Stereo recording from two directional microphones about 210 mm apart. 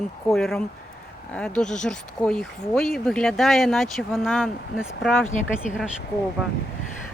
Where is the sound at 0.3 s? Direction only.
Centre (ahead or behind).